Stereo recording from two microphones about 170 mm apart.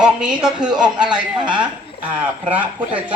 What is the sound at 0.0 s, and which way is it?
A woman's voice, 5° right (ahead or behind).